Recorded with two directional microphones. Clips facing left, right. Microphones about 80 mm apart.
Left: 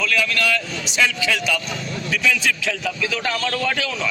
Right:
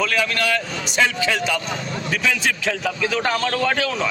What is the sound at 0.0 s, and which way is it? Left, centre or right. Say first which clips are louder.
Speech: even; right.